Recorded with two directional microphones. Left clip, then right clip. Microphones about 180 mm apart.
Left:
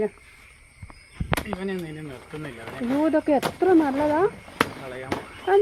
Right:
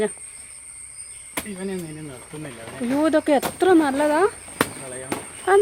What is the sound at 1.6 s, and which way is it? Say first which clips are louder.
Speech: even; 15° right (ahead or behind).